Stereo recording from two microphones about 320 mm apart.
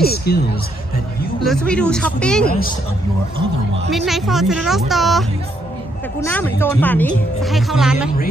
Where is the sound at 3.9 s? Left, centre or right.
Centre.